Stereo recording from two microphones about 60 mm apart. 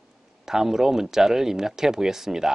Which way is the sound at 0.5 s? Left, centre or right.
Centre.